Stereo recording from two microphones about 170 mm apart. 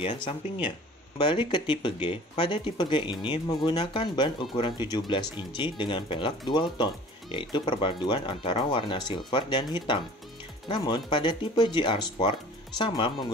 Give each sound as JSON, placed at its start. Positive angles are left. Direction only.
{"t": 0.0, "sound": "speech", "side_deg": 35}